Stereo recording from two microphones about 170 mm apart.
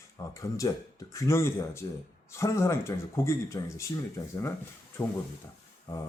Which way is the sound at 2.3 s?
15° left (ahead or behind).